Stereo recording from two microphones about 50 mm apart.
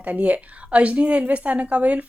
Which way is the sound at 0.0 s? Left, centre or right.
Right.